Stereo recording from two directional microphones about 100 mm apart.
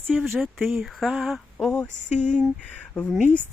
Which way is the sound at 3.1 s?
15° right (ahead or behind).